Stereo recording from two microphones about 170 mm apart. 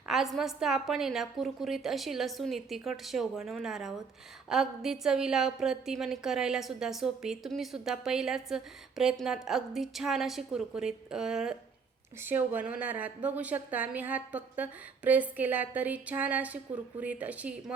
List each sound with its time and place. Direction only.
0.1 s a woman's voice: centre (ahead or behind)